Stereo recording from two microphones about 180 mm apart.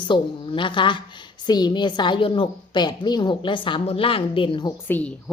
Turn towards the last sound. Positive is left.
turn(degrees=5)  # may be behind; listen again after turning